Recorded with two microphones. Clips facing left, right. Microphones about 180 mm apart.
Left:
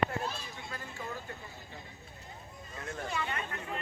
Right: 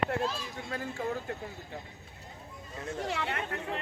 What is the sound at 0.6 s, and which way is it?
Speech, 55° right (ahead or behind).